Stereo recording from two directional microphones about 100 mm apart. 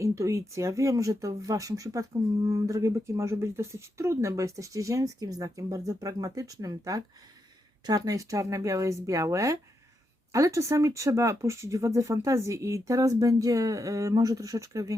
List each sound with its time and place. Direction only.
0.0 s speech: 30° right (ahead or behind)